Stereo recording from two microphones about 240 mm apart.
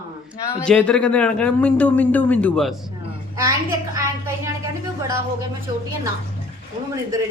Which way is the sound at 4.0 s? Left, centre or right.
Centre.